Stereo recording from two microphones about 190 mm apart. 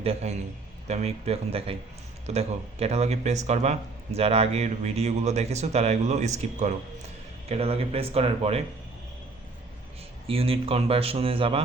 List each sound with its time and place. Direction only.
0.0 s speech: 35° right (ahead or behind)
10.2 s speech: 30° right (ahead or behind)